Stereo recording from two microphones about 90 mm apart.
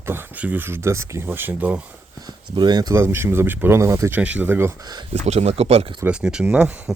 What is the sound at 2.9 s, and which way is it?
Speech, 30° right (ahead or behind).